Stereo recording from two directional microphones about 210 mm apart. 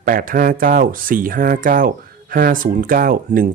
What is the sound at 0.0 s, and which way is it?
Speech, 40° right (ahead or behind).